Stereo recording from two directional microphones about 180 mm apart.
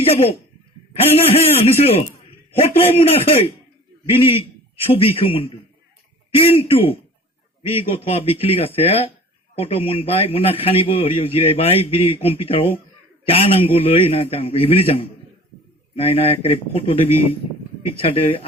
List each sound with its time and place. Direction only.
0.0 s a man's voice: 35° left (ahead or behind)
4.9 s a man's voice: 30° left (ahead or behind)